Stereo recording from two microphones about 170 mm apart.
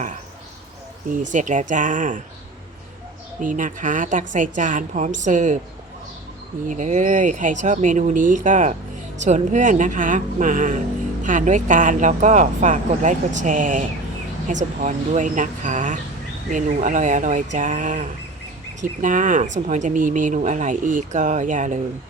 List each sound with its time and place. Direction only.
1.2 s speech: 45° right (ahead or behind)
3.4 s speech: 50° right (ahead or behind)
6.7 s speech: 45° right (ahead or behind)